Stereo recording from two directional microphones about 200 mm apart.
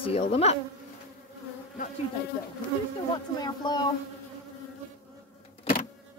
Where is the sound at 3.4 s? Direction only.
20° left (ahead or behind).